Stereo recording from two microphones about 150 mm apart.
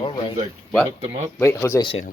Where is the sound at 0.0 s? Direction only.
35° left (ahead or behind).